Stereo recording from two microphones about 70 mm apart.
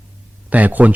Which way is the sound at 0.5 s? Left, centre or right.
Right.